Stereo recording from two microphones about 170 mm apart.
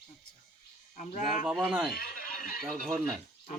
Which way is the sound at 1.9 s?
60° left (ahead or behind).